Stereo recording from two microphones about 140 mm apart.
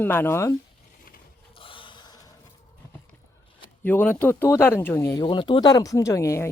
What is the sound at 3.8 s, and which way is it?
Speech, 15° left (ahead or behind).